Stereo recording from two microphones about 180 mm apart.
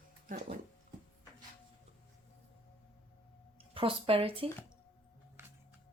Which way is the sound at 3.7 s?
30° right (ahead or behind).